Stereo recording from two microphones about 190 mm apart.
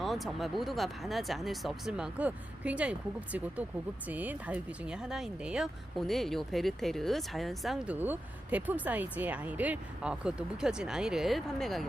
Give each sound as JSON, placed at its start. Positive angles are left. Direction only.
{"t": 0.0, "sound": "speech", "side_deg": 0}
{"t": 4.1, "sound": "speech", "side_deg": -10}